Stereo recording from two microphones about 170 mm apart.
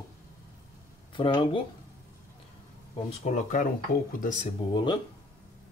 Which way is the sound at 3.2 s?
50° left (ahead or behind).